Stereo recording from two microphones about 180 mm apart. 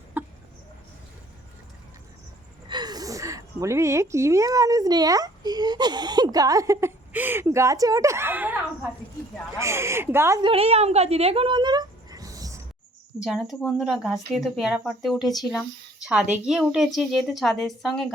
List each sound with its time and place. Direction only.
0.1 s chicken: 10° right (ahead or behind)
2.6 s a woman's voice: 25° right (ahead or behind)
9.6 s speech: 15° right (ahead or behind)
10.4 s speech: 35° right (ahead or behind)
13.1 s speech: 5° right (ahead or behind)
16.3 s speech: 5° right (ahead or behind)